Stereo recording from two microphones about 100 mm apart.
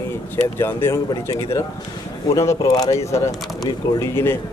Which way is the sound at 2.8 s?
30° left (ahead or behind).